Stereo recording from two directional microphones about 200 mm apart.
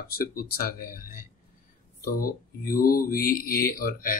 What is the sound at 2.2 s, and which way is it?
Speech, 45° left (ahead or behind).